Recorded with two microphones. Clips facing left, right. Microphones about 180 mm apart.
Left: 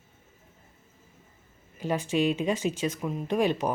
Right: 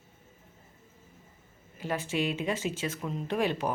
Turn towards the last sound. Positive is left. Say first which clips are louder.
# left 4 dB
turn(degrees=15)  # may be behind; listen again after turning